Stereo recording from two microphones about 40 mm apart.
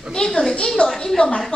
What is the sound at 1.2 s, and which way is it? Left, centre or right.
Speech, left.